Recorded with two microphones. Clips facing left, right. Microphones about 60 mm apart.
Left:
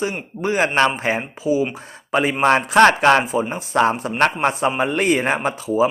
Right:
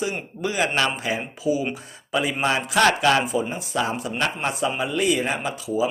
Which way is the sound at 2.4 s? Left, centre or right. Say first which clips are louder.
Left 7 dB; left.